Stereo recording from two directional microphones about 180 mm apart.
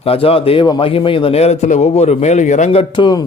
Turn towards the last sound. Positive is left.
turn(degrees=25)  # may be behind; listen again after turning